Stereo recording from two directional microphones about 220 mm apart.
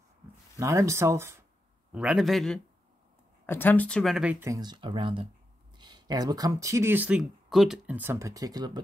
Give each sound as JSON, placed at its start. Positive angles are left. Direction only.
{"t": 0.6, "sound": "a man's voice", "side_deg": -15}